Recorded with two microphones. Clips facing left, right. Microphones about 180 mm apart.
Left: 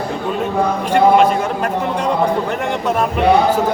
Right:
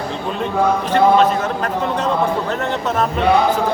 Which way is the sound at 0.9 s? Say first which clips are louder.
Left 2 dB; 10° left (ahead or behind).